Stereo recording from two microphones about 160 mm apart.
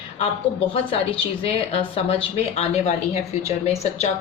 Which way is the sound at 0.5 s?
35° left (ahead or behind).